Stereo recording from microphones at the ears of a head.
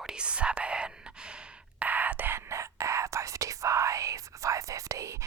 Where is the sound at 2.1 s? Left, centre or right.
Right.